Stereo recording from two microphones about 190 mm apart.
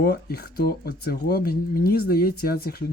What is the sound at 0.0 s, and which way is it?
Speech, 55° left (ahead or behind).